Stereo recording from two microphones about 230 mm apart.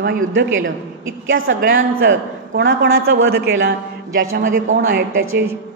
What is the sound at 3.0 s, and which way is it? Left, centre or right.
A man's voice, right.